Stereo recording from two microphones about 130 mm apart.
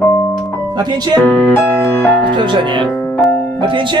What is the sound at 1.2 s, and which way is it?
Piano, 10° left (ahead or behind).